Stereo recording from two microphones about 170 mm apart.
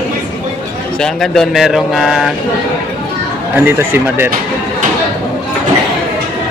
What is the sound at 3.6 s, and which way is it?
Speech, 10° right (ahead or behind).